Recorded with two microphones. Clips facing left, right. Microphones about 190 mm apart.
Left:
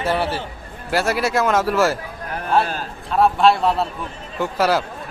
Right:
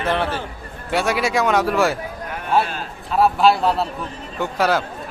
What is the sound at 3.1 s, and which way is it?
A man's voice, centre (ahead or behind).